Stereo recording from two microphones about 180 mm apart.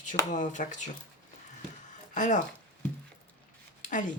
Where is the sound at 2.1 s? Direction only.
45° left (ahead or behind).